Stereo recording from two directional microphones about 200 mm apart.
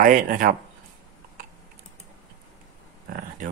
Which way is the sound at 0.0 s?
45° right (ahead or behind).